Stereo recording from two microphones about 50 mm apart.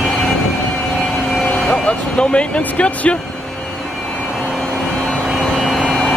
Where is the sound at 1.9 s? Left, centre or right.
Left.